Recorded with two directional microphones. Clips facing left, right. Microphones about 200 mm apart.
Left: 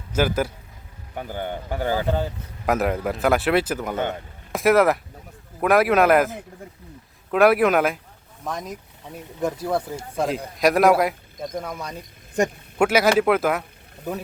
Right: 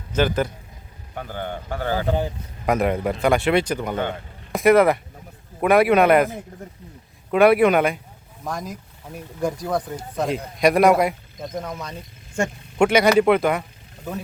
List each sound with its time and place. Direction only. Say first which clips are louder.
0.1 s a man's voice: right 1 dB; 5° left (ahead or behind)
2.0 s speech: right 1 dB; 15° right (ahead or behind)
2.6 s speech: right 1 dB; 5° left (ahead or behind)
12.8 s speech: right 2 dB; 5° left (ahead or behind)